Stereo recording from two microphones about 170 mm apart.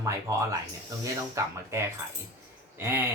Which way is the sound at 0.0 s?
20° right (ahead or behind).